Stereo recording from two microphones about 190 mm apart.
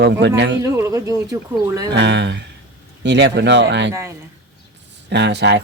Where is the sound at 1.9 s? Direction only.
65° right (ahead or behind).